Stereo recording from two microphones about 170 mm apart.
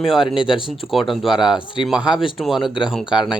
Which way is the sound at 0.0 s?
Centre (ahead or behind).